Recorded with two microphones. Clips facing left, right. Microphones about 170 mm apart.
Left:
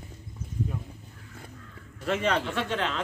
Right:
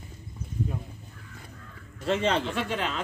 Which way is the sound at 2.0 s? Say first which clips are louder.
Right 1 dB; 25° right (ahead or behind).